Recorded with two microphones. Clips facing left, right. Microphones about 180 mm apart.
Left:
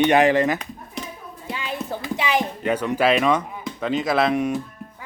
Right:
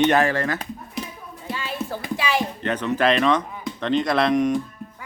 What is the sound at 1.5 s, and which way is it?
Music, 15° left (ahead or behind).